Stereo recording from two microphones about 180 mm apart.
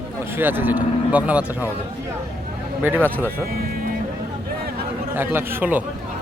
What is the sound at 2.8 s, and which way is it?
Speech, 10° right (ahead or behind).